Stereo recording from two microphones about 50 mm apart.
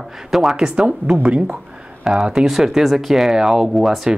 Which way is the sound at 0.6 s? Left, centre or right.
Centre.